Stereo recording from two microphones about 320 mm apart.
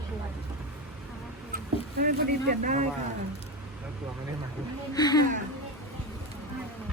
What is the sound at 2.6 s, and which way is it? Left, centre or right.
Speech, right.